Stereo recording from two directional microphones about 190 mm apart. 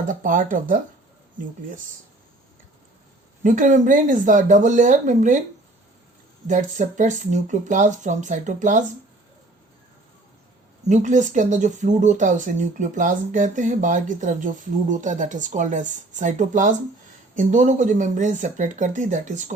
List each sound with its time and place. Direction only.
0.0 s speech: 45° right (ahead or behind)
3.4 s speech: 40° right (ahead or behind)
6.5 s speech: 40° right (ahead or behind)
10.8 s speech: 40° right (ahead or behind)